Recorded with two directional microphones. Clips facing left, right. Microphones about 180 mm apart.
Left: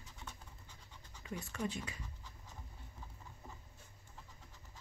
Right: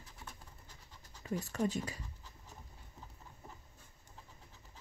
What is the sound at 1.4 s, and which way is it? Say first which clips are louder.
Speech: right 5 dB; 40° right (ahead or behind).